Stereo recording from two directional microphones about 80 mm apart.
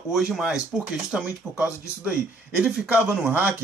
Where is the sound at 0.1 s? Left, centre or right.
Centre.